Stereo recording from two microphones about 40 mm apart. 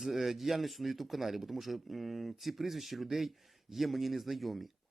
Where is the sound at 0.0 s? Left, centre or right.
Centre.